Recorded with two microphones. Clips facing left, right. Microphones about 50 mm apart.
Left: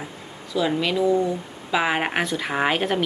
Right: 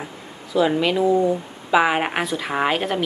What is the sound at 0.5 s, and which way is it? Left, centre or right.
Speech, centre.